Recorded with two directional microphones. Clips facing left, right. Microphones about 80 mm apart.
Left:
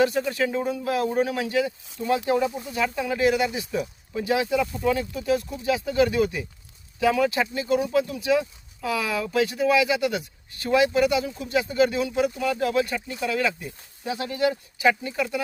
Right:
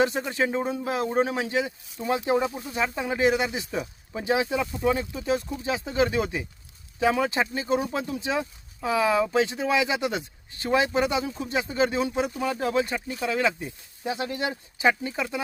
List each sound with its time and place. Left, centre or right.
0.0 s speech: right